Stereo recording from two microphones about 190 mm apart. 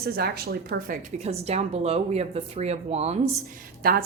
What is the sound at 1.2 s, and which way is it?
Speech, 35° right (ahead or behind).